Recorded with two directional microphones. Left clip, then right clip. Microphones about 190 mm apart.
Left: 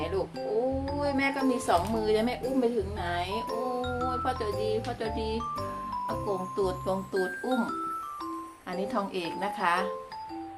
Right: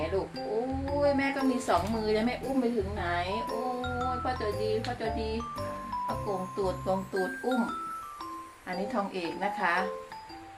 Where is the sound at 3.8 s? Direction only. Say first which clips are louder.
Left 1 dB; 5° left (ahead or behind).